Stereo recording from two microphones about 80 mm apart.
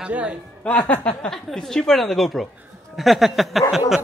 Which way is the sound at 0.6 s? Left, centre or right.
Centre.